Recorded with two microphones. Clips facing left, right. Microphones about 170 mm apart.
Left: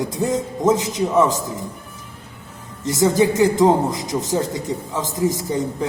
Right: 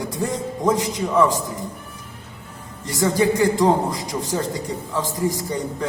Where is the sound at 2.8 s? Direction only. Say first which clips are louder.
Left 3 dB; 20° left (ahead or behind).